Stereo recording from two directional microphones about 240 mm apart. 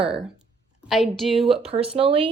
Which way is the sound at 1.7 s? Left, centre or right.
Right.